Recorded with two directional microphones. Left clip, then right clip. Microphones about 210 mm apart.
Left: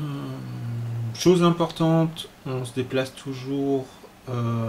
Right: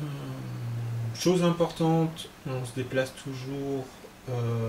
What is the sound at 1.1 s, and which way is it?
Speech, centre (ahead or behind).